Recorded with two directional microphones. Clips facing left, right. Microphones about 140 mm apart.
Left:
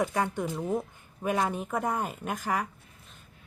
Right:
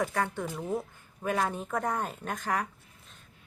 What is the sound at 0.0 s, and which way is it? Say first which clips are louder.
Speech: left 2 dB; 15° left (ahead or behind).